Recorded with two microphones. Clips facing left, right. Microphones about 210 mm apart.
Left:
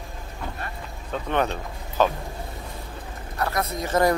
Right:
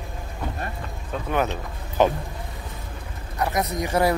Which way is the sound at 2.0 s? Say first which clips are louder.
Right 2 dB; 20° right (ahead or behind).